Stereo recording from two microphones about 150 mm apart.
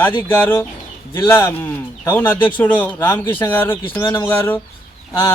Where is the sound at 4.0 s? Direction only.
25° left (ahead or behind).